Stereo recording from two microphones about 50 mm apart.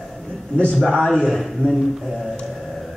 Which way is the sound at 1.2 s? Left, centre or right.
Centre.